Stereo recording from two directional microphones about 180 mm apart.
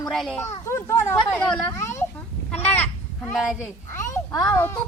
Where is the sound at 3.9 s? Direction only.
15° left (ahead or behind).